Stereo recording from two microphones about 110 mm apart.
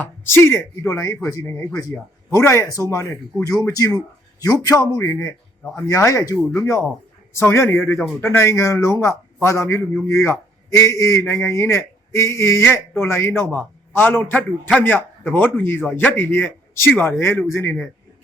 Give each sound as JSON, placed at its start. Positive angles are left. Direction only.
{"t": 0.0, "sound": "a man's voice", "side_deg": 20}